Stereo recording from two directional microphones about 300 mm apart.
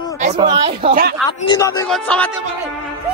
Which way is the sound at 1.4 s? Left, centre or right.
Centre.